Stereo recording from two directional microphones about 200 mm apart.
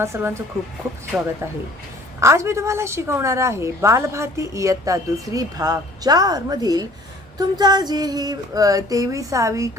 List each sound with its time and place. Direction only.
0.0 s female singing: 10° right (ahead or behind)
1.1 s speech: 5° right (ahead or behind)
2.2 s female singing: 15° right (ahead or behind)